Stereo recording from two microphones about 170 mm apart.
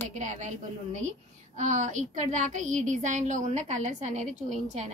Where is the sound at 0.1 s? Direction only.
45° right (ahead or behind).